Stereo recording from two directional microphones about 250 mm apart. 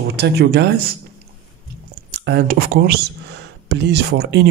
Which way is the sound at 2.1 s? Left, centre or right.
Right.